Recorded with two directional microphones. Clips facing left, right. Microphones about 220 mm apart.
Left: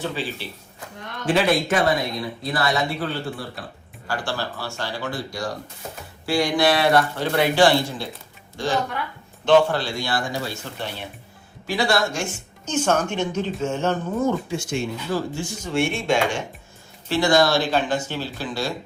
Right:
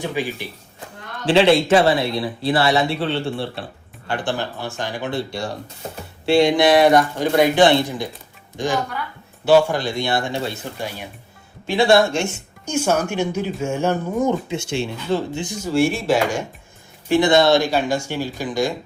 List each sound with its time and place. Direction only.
0.0 s speech: 15° right (ahead or behind)
1.3 s speech: 30° right (ahead or behind)
1.9 s speech: 75° right (ahead or behind)
2.5 s speech: 30° right (ahead or behind); by 11.0 s 10° right (ahead or behind)
11.6 s speech: 25° right (ahead or behind)
12.6 s speech: 10° right (ahead or behind)
14.5 s speech: 25° right (ahead or behind)
15.6 s speech: centre (ahead or behind)
17.1 s speech: 20° right (ahead or behind)
17.6 s speech: 10° right (ahead or behind)